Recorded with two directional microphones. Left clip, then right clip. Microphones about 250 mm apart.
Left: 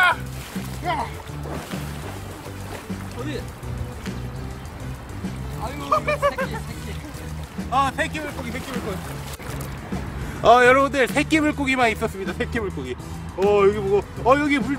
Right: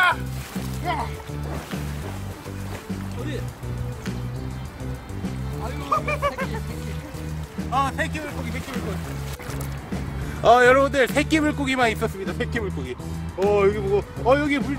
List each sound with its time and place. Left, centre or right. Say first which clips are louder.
0.8 s speech: left 2 dB; centre
5.9 s music: left 3 dB; centre
7.7 s speech: left 2 dB; centre
9.9 s speech: even; centre